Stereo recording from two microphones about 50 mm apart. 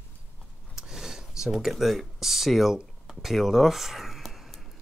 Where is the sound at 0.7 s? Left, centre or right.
Centre.